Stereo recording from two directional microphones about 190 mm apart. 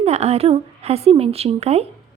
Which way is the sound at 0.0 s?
35° right (ahead or behind).